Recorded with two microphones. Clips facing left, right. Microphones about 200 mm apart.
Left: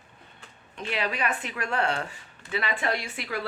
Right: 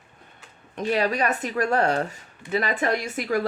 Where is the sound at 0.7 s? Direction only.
40° right (ahead or behind).